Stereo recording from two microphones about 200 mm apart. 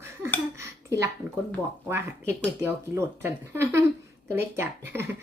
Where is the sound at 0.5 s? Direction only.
15° right (ahead or behind).